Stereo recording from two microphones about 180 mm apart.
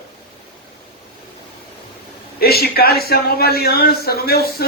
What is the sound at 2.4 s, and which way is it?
A man's voice, 60° left (ahead or behind).